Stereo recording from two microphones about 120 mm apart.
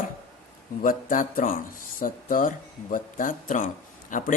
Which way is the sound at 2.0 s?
90° left.